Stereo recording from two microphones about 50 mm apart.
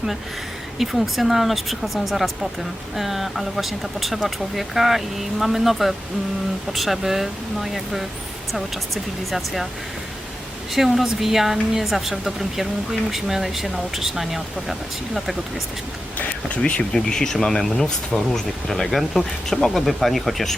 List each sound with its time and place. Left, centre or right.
0.8 s speech: centre
9.3 s speech: centre
10.8 s speech: centre
16.1 s a sound: left
16.9 s speech: centre